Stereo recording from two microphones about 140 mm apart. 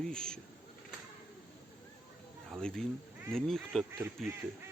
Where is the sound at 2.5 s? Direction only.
5° left (ahead or behind).